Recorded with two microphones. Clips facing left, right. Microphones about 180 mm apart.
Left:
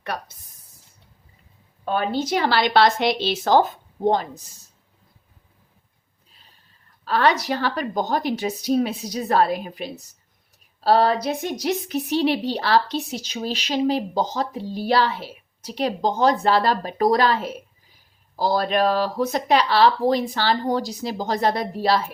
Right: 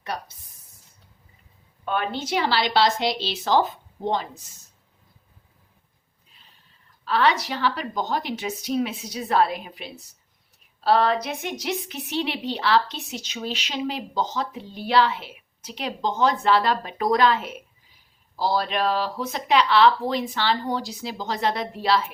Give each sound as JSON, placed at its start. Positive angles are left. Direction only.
{"t": 1.8, "sound": "speech", "side_deg": 35}
{"t": 7.0, "sound": "a woman's voice", "side_deg": 45}